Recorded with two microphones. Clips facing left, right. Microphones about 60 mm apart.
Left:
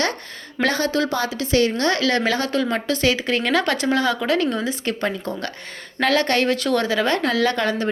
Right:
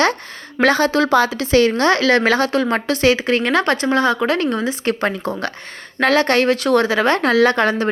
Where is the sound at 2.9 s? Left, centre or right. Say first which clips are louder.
Right 5 dB; right.